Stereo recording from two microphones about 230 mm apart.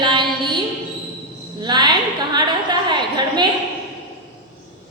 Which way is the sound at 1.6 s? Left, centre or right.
Centre.